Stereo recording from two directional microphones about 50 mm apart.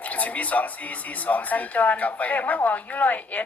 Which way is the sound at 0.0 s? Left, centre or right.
Left.